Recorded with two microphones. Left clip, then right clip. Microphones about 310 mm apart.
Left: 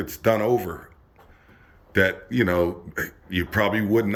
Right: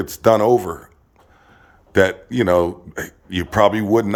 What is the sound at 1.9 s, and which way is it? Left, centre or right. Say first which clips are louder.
A man's voice: right 5 dB; centre.